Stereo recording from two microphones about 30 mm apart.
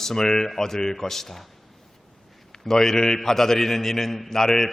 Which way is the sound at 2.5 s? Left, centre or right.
Centre.